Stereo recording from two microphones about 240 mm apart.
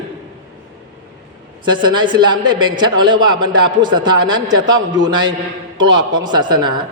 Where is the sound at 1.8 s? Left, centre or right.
Centre.